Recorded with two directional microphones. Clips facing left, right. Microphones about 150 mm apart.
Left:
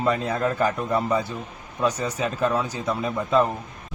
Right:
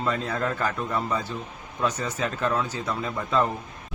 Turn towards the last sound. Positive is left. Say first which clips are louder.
# left 4 dB
turn(degrees=15)  # may be behind; listen again after turning